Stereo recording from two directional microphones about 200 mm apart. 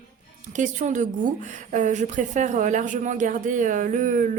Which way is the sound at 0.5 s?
40° right (ahead or behind).